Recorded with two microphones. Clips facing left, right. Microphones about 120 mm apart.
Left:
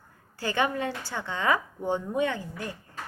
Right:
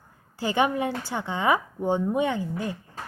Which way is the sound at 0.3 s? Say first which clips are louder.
Right 4 dB; 20° right (ahead or behind).